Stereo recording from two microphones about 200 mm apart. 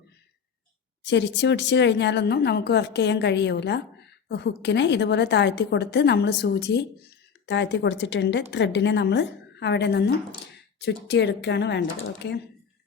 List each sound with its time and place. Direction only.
1.0 s a woman's voice: 60° left (ahead or behind)